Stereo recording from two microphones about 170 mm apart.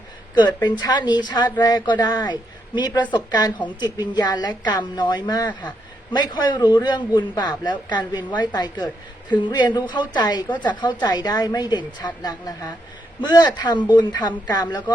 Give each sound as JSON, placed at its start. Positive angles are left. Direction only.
{"t": 0.3, "sound": "a woman's voice", "side_deg": 25}